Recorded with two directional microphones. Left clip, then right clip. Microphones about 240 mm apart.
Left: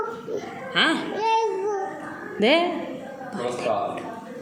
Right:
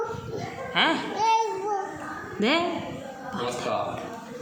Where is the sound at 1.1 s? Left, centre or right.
Centre.